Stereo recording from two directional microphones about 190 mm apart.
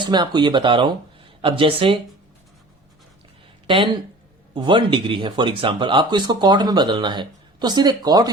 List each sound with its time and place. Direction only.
0.0 s speech: 25° right (ahead or behind)
4.5 s speech: 25° right (ahead or behind)